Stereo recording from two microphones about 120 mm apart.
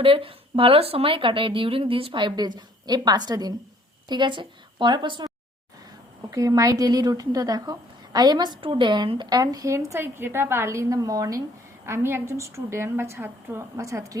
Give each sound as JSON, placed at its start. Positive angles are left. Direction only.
{"t": 0.0, "sound": "a woman's voice", "side_deg": -50}
{"t": 6.3, "sound": "a woman's voice", "side_deg": -30}